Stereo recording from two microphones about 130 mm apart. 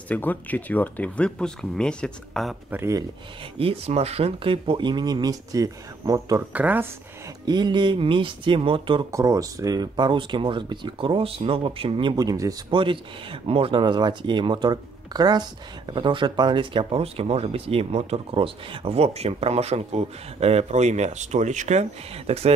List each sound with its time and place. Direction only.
0.1 s speech: 15° left (ahead or behind)
2.7 s speech: 20° right (ahead or behind)
3.5 s speech: 50° right (ahead or behind); by 6.4 s 25° right (ahead or behind)
6.5 s speech: 15° right (ahead or behind)
7.4 s speech: 35° right (ahead or behind)
9.1 s speech: 25° right (ahead or behind)
12.7 s speech: 40° right (ahead or behind)